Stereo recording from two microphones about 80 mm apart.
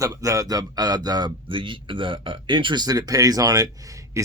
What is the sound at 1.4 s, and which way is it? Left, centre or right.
A man's voice, right.